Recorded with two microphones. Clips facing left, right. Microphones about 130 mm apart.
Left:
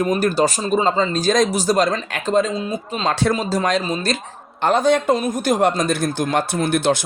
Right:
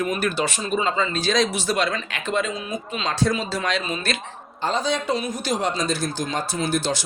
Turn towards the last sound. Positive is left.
turn(degrees=60)  # may be behind; listen again after turning